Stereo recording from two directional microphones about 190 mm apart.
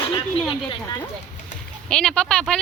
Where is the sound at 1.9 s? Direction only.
5° left (ahead or behind).